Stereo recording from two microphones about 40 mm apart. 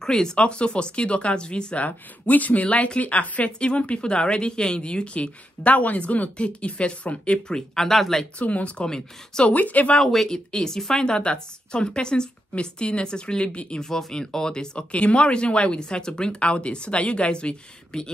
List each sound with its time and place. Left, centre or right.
0.0 s speech: centre
0.4 s speech: left
1.9 s speech: left
7.4 s speech: centre
8.4 s speech: left
8.8 s speech: centre
9.5 s speech: left
9.9 s speech: centre; by 13.7 s left
13.7 s speech: centre